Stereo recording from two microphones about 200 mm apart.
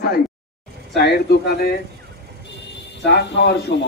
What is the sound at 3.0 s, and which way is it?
Speech, 60° left (ahead or behind).